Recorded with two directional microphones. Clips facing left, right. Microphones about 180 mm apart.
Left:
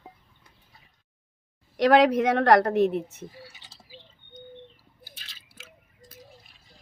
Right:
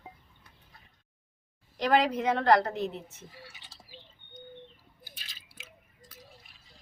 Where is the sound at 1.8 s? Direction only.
70° left (ahead or behind).